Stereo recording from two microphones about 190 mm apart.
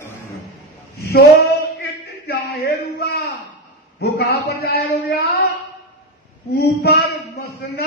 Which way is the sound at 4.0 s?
60° left (ahead or behind).